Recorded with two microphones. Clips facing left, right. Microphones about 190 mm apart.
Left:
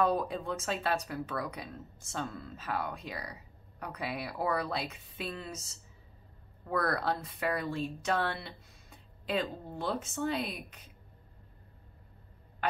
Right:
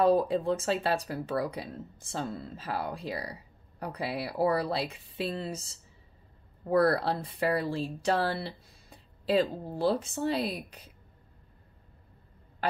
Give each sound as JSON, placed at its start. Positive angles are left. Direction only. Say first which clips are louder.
{"t": 0.0, "sound": "speech", "louder": "right 6 dB", "side_deg": -30}